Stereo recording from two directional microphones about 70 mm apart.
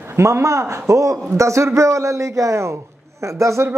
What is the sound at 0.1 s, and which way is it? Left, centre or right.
A man's voice, right.